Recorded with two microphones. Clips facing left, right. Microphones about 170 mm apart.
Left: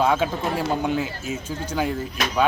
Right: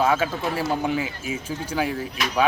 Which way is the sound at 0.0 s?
5° right (ahead or behind).